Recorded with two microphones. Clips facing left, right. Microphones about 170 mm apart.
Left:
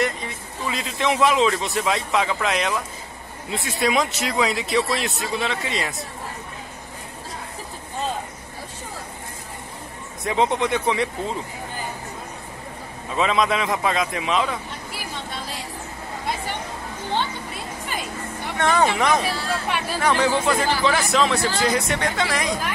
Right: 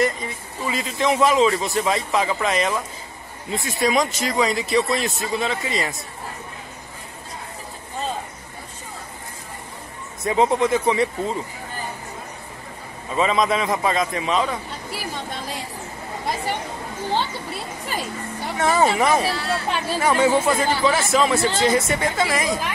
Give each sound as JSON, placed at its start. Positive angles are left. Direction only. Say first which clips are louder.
{"t": 0.0, "sound": "a man's voice", "louder": "right 3 dB", "side_deg": 0}
{"t": 10.2, "sound": "a man's voice", "louder": "right 3 dB", "side_deg": -5}
{"t": 13.1, "sound": "a man's voice", "louder": "right 1 dB", "side_deg": 0}
{"t": 18.6, "sound": "a man's voice", "louder": "right 1 dB", "side_deg": -5}
{"t": 19.2, "sound": "speech", "louder": "right 2 dB", "side_deg": -30}
{"t": 20.0, "sound": "a man's voice", "louder": "right 3 dB", "side_deg": -5}